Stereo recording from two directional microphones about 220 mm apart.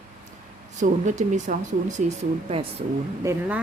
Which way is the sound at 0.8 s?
35° right (ahead or behind).